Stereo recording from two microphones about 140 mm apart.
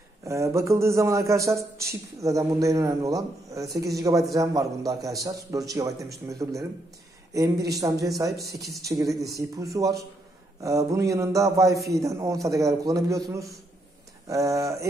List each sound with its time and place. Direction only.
0.2 s a man's voice: 20° right (ahead or behind)
3.5 s speech: centre (ahead or behind)
3.8 s a man's voice: 25° right (ahead or behind)